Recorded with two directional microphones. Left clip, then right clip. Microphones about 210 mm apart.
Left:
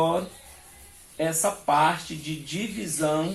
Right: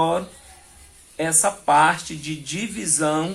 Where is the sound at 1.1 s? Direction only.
60° right (ahead or behind).